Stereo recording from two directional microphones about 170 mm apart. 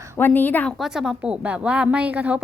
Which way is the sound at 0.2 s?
10° left (ahead or behind).